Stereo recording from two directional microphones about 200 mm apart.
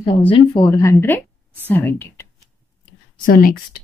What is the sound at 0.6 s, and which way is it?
Speech, 15° left (ahead or behind).